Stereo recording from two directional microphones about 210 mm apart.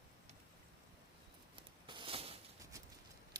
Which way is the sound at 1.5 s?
25° right (ahead or behind).